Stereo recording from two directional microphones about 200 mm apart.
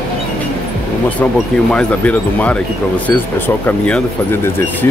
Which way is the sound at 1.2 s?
5° left (ahead or behind).